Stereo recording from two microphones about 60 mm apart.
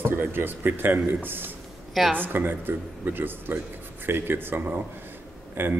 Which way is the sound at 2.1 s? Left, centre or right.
Right.